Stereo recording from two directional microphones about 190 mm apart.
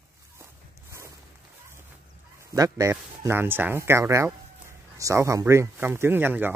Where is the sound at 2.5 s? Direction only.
20° right (ahead or behind).